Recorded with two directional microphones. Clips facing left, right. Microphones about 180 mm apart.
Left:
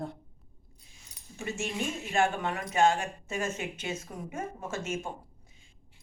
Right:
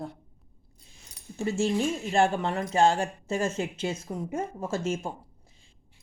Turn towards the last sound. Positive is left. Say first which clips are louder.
# right 5 dB
turn(degrees=-30)  # may be behind; listen again after turning